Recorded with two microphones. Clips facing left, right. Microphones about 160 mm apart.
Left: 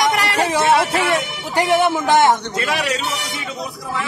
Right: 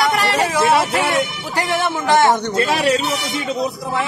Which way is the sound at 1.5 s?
15° left (ahead or behind).